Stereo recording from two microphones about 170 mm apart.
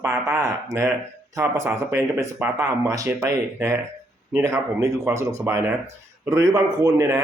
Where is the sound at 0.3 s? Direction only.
20° right (ahead or behind).